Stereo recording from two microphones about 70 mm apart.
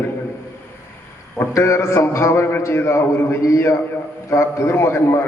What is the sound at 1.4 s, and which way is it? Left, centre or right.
A man's voice, left.